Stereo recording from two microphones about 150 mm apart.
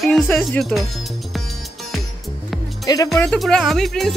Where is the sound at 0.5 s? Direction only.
Centre (ahead or behind).